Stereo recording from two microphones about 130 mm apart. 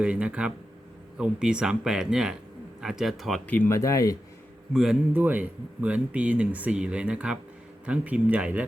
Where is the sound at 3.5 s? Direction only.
15° left (ahead or behind).